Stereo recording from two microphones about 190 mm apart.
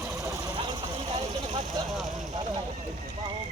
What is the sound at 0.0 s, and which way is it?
Sewing machine, 15° right (ahead or behind).